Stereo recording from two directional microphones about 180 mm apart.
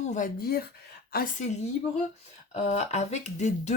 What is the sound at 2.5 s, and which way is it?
Speech, 40° left (ahead or behind).